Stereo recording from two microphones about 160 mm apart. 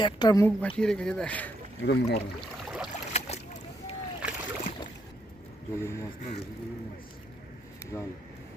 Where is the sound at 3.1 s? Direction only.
40° left (ahead or behind).